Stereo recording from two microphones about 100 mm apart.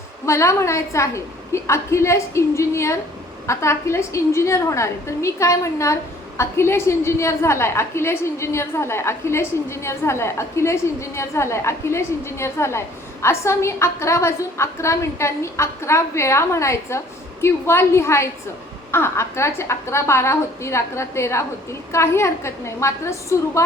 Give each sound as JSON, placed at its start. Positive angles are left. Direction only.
{"t": 0.3, "sound": "a woman's voice", "side_deg": 30}